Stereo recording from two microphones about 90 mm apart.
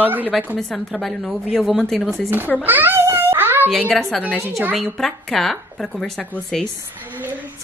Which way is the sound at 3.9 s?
Centre (ahead or behind).